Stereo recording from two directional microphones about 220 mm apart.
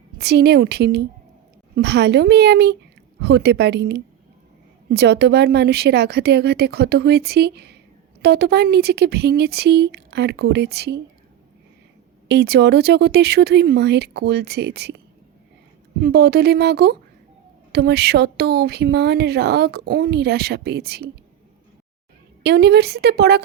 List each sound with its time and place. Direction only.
0.2 s speech: 45° right (ahead or behind)
12.3 s speech: 50° right (ahead or behind)
22.4 s speech: 50° right (ahead or behind)